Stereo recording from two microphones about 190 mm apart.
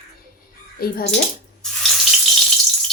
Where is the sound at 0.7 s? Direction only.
50° left (ahead or behind).